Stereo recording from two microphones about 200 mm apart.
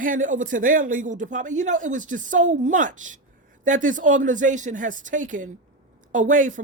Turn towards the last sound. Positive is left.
turn(degrees=-40)  # may be behind; listen again after turning